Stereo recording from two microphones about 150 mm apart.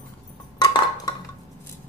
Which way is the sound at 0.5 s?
30° left (ahead or behind).